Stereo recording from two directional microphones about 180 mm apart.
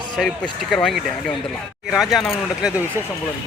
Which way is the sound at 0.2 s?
Centre (ahead or behind).